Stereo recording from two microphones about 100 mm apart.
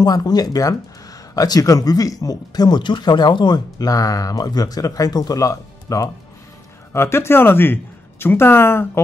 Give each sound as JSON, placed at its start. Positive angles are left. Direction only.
{"t": 0.0, "sound": "a woman's voice", "side_deg": 40}